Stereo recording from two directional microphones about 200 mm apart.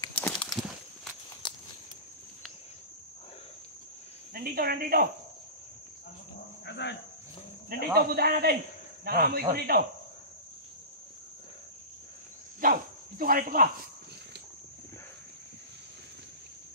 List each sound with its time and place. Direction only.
0.0 s a sound: 10° left (ahead or behind)
1.4 s a sound: 25° left (ahead or behind)
4.3 s speech: 50° right (ahead or behind)
6.6 s speech: 60° left (ahead or behind)
7.7 s a man's voice: 50° right (ahead or behind)
12.6 s cricket: 45° right (ahead or behind)
13.2 s a man's voice: 45° right (ahead or behind)